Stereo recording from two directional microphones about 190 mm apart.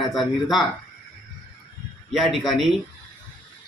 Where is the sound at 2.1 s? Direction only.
Centre (ahead or behind).